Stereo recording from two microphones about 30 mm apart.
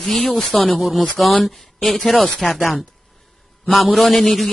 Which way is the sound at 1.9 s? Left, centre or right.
Centre.